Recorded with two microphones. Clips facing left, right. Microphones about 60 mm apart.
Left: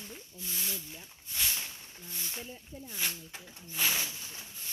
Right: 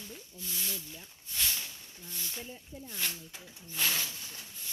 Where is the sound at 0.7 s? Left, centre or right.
Centre.